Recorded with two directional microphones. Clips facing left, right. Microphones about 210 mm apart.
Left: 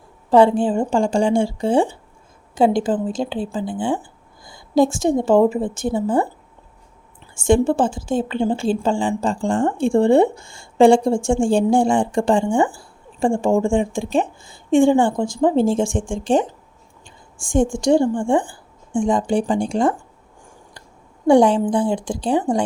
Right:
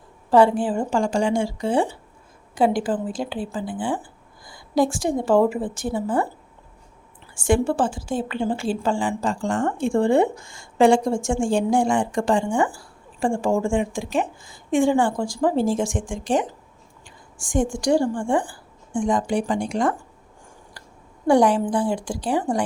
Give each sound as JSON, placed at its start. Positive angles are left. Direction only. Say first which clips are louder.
{"t": 0.3, "sound": "a woman's voice", "louder": "left 3 dB", "side_deg": 25}
{"t": 7.3, "sound": "a woman's voice", "louder": "left 4 dB", "side_deg": 25}
{"t": 21.2, "sound": "a woman's voice", "louder": "left 4 dB", "side_deg": 25}